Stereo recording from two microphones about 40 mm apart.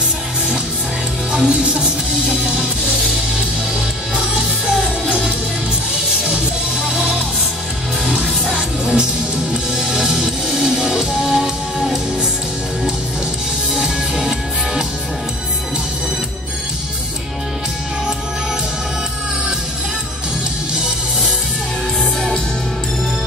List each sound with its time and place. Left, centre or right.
1.3 s music: right
4.6 s music: centre
8.1 s music: right
13.7 s music: centre